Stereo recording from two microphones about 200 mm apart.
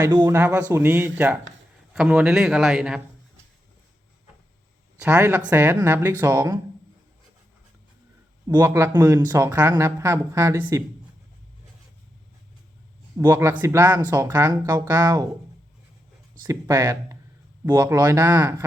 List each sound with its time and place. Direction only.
0.0 s speech: 20° right (ahead or behind)
0.3 s speech: 10° right (ahead or behind)
5.0 s speech: 10° right (ahead or behind)
8.4 s speech: 15° right (ahead or behind)
13.1 s speech: 15° right (ahead or behind)
16.4 s speech: 15° right (ahead or behind)